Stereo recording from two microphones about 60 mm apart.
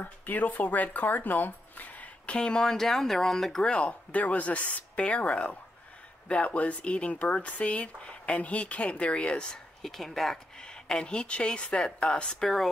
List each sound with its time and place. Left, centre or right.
0.0 s speech: left; by 12.6 s centre